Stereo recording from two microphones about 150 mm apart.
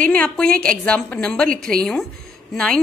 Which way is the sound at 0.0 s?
5° left (ahead or behind).